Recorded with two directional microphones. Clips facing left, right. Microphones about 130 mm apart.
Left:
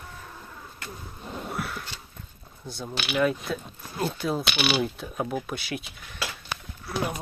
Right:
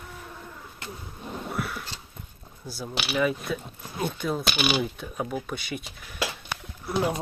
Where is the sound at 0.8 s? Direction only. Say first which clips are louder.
Right 1 dB; 20° right (ahead or behind).